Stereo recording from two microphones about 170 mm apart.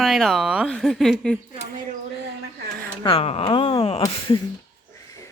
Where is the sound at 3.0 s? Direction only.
35° left (ahead or behind).